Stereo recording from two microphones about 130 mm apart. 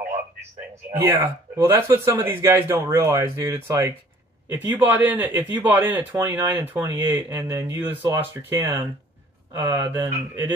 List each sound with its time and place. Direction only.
0.9 s speech: 20° right (ahead or behind)